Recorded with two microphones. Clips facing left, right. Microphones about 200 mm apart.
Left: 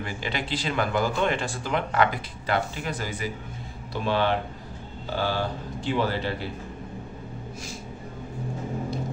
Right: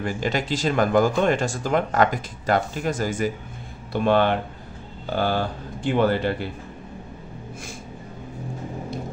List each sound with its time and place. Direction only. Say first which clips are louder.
0.0 s speech: right 6 dB; 45° right (ahead or behind)